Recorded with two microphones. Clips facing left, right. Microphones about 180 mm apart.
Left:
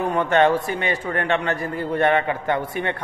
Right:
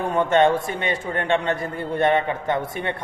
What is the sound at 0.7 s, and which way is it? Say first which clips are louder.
A man's voice: left 1 dB; 25° right (ahead or behind).